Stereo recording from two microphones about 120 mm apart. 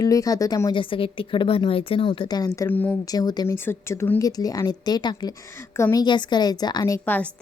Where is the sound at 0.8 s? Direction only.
45° left (ahead or behind).